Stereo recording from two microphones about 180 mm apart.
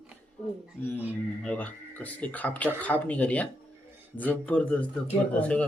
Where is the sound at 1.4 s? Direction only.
10° left (ahead or behind).